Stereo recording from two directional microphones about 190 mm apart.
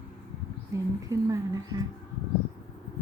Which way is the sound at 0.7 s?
15° right (ahead or behind).